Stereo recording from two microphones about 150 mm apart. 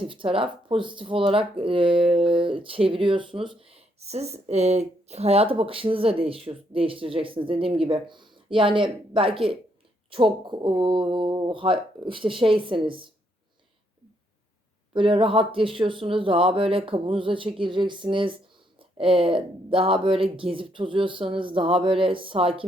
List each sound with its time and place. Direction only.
0.1 s speech: 35° right (ahead or behind)
14.9 s speech: 35° right (ahead or behind)